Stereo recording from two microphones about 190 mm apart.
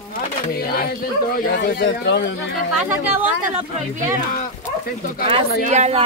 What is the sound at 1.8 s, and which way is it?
Speech, 65° left (ahead or behind).